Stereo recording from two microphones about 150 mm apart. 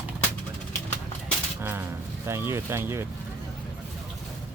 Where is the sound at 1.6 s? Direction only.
15° right (ahead or behind).